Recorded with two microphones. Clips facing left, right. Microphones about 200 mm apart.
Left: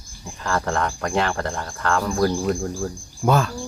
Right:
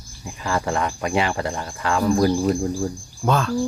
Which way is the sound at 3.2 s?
5° left (ahead or behind).